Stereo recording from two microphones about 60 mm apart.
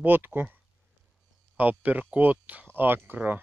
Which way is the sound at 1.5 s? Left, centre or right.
Right.